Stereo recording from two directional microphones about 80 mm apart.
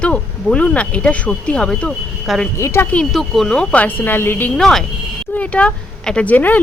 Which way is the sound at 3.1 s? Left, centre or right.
Centre.